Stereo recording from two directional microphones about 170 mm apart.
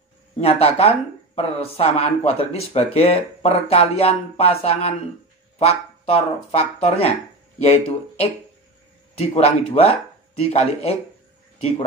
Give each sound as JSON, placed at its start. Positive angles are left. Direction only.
{"t": 0.4, "sound": "speech", "side_deg": 35}
{"t": 9.3, "sound": "speech", "side_deg": 35}